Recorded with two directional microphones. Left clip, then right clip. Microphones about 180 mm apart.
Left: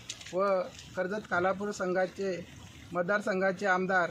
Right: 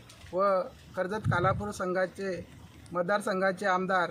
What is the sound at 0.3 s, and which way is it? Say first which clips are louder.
Speech: right 2 dB; 25° right (ahead or behind).